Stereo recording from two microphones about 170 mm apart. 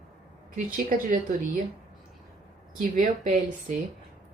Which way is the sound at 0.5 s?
55° right (ahead or behind).